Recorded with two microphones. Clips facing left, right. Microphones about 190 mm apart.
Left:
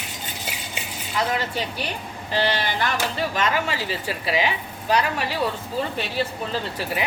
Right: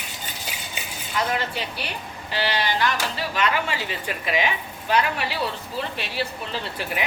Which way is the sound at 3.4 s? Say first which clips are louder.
Right 1 dB; 40° left (ahead or behind).